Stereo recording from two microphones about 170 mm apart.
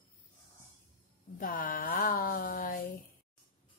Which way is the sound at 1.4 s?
55° left (ahead or behind).